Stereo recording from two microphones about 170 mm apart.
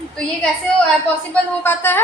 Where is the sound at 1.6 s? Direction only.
15° left (ahead or behind).